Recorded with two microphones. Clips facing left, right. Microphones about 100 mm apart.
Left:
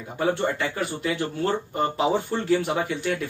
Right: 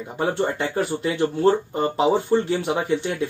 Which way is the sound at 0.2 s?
25° right (ahead or behind).